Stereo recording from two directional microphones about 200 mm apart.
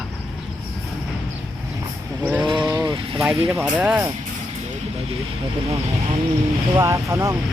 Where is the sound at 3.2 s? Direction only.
5° right (ahead or behind).